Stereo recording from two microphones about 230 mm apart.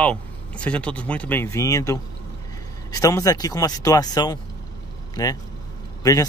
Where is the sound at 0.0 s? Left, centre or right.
Centre.